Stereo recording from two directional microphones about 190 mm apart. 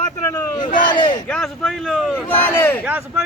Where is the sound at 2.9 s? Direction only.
10° right (ahead or behind).